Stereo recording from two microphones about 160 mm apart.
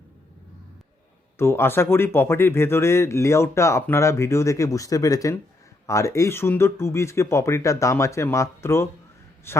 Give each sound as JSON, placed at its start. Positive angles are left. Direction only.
{"t": 1.4, "sound": "speech", "side_deg": 15}